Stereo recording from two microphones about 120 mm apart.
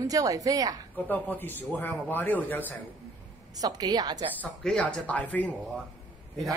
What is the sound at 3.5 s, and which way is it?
Speech, 30° right (ahead or behind).